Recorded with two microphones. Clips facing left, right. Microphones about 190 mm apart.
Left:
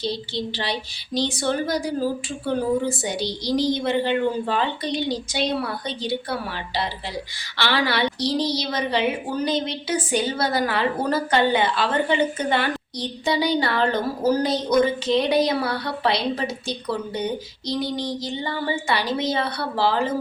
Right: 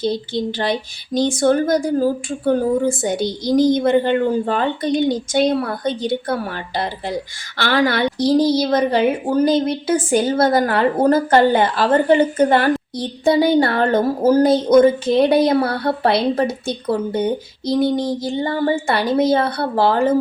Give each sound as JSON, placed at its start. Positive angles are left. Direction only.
{"t": 0.0, "sound": "a woman's voice", "side_deg": -50}